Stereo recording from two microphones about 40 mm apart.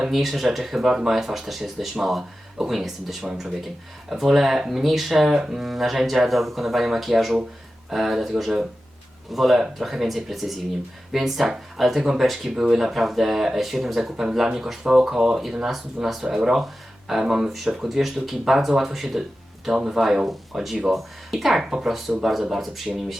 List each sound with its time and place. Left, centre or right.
0.1 s speech: centre
17.5 s speech: centre